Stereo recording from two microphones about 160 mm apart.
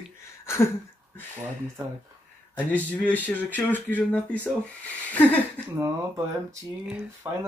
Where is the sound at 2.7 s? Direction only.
10° left (ahead or behind).